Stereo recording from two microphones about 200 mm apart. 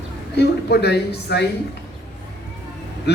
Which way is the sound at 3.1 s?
55° left (ahead or behind).